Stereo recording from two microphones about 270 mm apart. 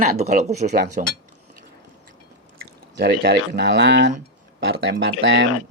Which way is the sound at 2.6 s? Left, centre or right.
Right.